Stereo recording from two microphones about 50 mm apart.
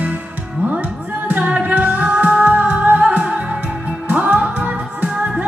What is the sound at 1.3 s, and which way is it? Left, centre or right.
Music, right.